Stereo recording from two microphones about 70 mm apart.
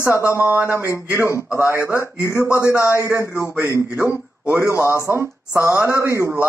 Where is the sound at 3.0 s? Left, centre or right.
Right.